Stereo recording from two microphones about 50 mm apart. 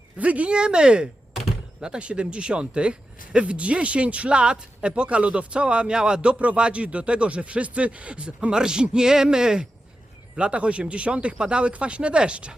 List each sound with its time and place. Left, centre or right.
0.2 s speech: right
0.5 s speech: centre